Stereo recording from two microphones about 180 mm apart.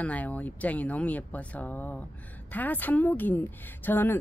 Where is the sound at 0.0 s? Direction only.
10° left (ahead or behind).